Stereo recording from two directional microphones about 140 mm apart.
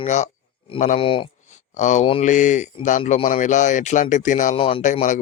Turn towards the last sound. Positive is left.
turn(degrees=60)  # may be behind; listen again after turning